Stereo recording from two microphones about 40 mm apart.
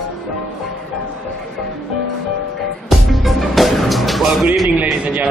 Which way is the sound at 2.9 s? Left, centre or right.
Centre.